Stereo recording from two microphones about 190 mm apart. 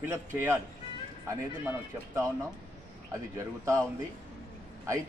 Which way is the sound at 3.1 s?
15° right (ahead or behind).